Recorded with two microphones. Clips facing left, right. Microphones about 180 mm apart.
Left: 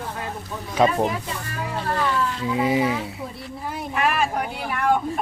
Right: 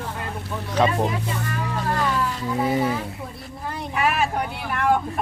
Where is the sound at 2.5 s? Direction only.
10° left (ahead or behind).